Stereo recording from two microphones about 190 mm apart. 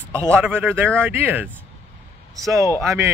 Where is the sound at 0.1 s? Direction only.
10° right (ahead or behind).